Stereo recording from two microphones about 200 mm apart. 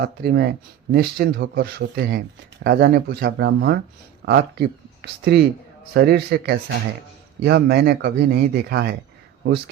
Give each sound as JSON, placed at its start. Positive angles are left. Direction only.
{"t": 0.0, "sound": "speech", "side_deg": -55}